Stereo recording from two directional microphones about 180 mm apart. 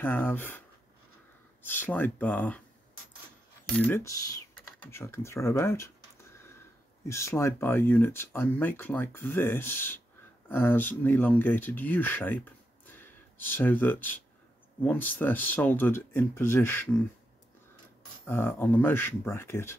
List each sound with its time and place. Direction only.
0.0 s speech: 10° left (ahead or behind)
1.6 s speech: 10° left (ahead or behind)
3.7 s speech: 10° left (ahead or behind)
6.3 s a sound: 15° left (ahead or behind)
7.1 s speech: 15° left (ahead or behind)
18.2 s speech: 15° left (ahead or behind)